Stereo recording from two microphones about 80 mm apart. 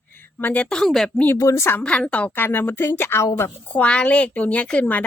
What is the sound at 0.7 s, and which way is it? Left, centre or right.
Speech, centre.